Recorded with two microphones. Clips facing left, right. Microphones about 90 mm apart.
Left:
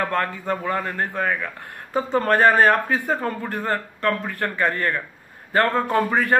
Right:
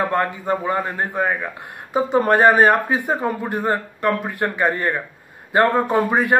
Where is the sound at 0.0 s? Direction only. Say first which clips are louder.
Right 3 dB; 15° right (ahead or behind).